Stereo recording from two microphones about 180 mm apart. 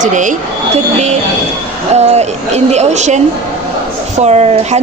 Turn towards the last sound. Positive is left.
turn(degrees=-35)  # may be behind; listen again after turning